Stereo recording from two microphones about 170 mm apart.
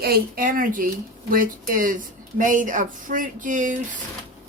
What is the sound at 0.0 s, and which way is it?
Speech, 60° right (ahead or behind).